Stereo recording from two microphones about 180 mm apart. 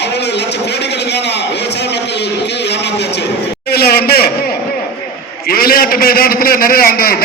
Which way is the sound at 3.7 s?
60° left (ahead or behind).